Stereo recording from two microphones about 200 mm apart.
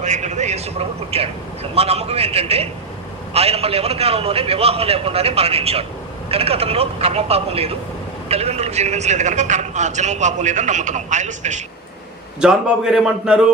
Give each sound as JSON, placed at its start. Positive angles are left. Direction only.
{"t": 0.0, "sound": "a man's voice", "side_deg": -35}
{"t": 12.4, "sound": "a man's voice", "side_deg": -5}